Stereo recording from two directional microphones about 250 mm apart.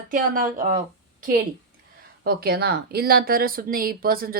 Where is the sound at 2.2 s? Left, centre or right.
Right.